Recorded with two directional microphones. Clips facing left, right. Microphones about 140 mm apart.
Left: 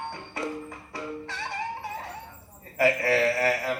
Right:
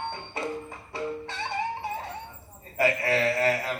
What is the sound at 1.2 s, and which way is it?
Music, 25° right (ahead or behind).